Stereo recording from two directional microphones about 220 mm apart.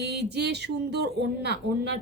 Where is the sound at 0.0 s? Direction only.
50° right (ahead or behind).